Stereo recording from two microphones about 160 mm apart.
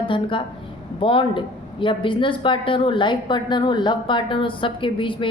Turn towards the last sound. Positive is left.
turn(degrees=30)  # may be behind; listen again after turning